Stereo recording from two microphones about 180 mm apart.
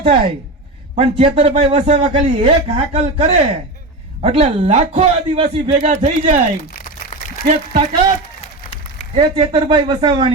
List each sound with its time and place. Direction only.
0.0 s a man's voice: 30° right (ahead or behind)
7.1 s a sound: 45° left (ahead or behind)
9.1 s speech: 30° right (ahead or behind)